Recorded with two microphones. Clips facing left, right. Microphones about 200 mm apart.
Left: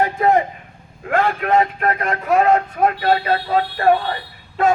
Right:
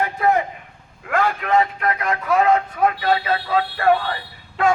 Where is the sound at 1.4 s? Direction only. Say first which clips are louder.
Left 2 dB; 45° left (ahead or behind).